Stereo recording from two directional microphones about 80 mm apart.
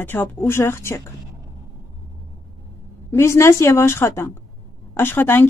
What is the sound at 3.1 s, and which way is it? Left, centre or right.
Speech, left.